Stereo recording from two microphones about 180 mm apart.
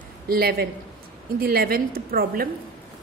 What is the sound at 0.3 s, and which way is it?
A woman's voice, 60° right (ahead or behind).